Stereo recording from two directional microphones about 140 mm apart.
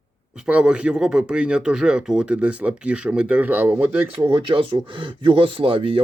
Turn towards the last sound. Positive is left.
turn(degrees=-40)  # may be behind; listen again after turning